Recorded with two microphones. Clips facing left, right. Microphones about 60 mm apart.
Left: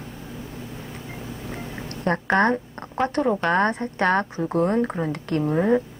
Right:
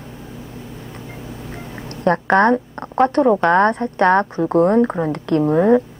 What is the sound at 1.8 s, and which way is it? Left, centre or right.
A woman's voice, right.